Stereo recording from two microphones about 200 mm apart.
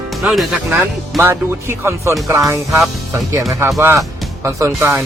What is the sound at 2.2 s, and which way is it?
Music, 15° right (ahead or behind).